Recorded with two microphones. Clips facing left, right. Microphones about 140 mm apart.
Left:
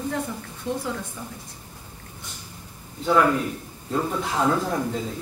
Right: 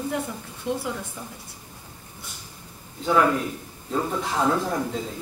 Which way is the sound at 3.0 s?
Centre (ahead or behind).